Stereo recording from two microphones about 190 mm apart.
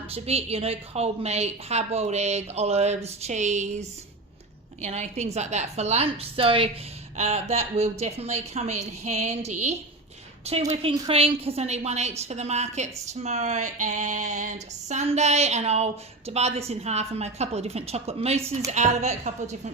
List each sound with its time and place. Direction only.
0.1 s a woman's voice: 30° right (ahead or behind)